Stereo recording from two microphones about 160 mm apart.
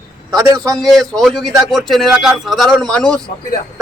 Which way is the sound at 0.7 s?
Centre (ahead or behind).